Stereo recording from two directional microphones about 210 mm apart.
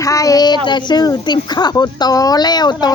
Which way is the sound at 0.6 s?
20° left (ahead or behind).